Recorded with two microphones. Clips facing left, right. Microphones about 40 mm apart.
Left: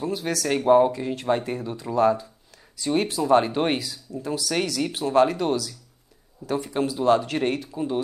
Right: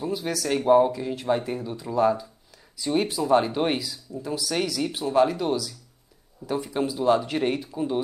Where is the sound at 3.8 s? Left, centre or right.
Left.